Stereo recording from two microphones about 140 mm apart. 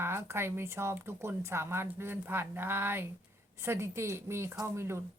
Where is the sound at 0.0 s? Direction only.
15° right (ahead or behind).